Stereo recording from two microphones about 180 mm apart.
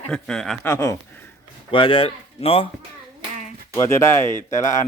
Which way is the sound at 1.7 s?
30° left (ahead or behind).